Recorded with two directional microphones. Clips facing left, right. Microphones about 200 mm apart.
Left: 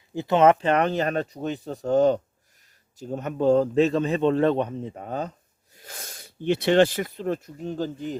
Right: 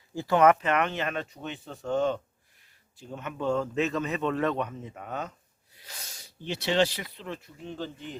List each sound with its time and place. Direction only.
0.1 s speech: 20° left (ahead or behind)
5.7 s speech: 50° left (ahead or behind)